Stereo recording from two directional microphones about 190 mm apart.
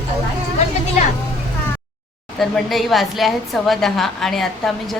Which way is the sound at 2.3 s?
Centre (ahead or behind).